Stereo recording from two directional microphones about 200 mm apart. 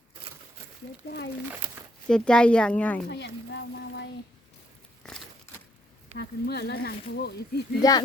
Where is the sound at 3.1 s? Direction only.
55° left (ahead or behind).